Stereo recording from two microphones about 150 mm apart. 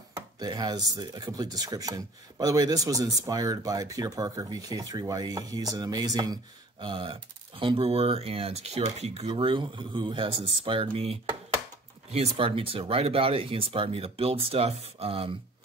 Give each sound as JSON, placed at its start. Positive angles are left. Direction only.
{"t": 0.4, "sound": "speech", "side_deg": -25}